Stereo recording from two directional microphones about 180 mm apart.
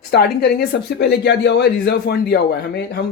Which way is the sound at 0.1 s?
65° left (ahead or behind).